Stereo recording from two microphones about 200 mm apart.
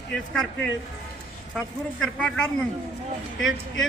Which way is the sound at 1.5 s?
Centre (ahead or behind).